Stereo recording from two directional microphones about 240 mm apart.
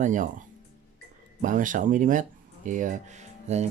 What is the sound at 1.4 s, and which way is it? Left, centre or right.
Speech, right.